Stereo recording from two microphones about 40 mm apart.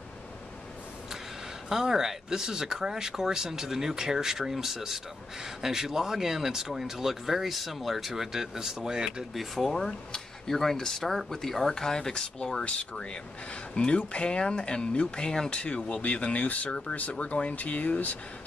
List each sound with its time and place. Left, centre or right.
1.7 s speech: centre
9.3 s speech: centre
10.1 s a sound: centre
10.8 s speech: centre
15.6 s speech: left